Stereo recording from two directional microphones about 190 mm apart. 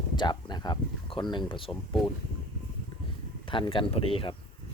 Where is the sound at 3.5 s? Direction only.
30° left (ahead or behind).